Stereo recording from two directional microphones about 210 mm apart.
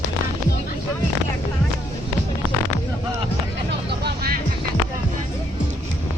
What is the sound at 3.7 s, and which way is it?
Vehicle, 50° right (ahead or behind).